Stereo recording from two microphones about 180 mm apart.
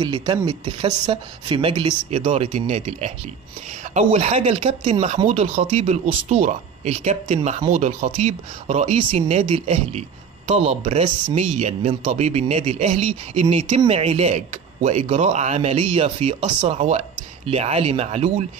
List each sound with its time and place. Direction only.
0.0 s speech: 25° right (ahead or behind)